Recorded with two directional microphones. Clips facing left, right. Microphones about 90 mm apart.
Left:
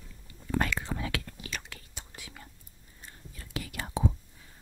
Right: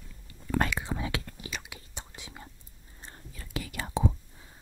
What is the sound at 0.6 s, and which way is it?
Whispering, 15° right (ahead or behind).